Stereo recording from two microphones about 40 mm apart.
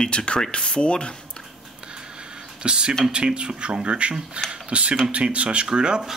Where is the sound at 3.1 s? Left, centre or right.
Right.